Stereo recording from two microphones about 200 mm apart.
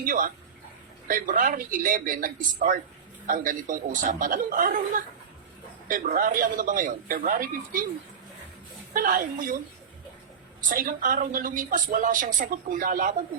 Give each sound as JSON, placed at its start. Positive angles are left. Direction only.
{"t": 0.0, "sound": "speech", "side_deg": -45}
{"t": 8.9, "sound": "speech", "side_deg": -45}
{"t": 10.7, "sound": "speech", "side_deg": -40}